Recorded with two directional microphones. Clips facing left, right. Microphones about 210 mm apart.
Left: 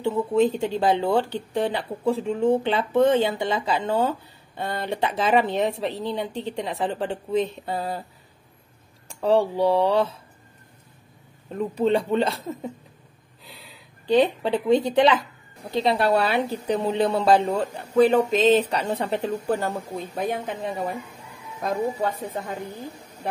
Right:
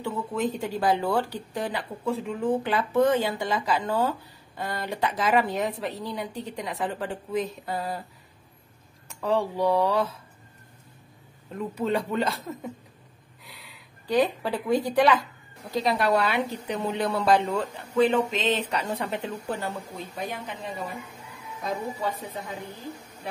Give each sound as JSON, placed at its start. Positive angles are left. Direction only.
{"t": 0.0, "sound": "speech", "side_deg": 25}
{"t": 9.0, "sound": "speech", "side_deg": 30}
{"t": 11.5, "sound": "a woman's voice", "side_deg": 30}
{"t": 20.2, "sound": "a woman's voice", "side_deg": 50}